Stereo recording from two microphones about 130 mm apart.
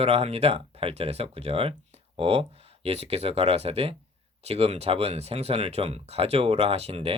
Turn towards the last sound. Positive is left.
turn(degrees=-50)  # may be behind; listen again after turning